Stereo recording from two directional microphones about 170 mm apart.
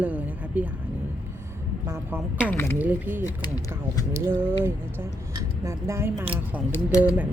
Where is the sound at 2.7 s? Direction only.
10° right (ahead or behind).